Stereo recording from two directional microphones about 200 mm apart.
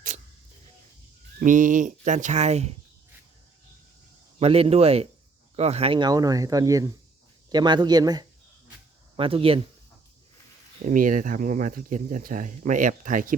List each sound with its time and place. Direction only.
1.4 s speech: 40° right (ahead or behind)
4.4 s speech: 30° right (ahead or behind)
10.8 s speech: 40° right (ahead or behind)